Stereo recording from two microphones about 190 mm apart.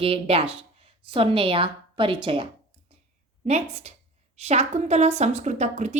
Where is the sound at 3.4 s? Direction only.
35° right (ahead or behind).